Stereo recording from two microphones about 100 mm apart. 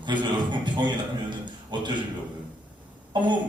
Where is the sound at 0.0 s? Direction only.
50° right (ahead or behind).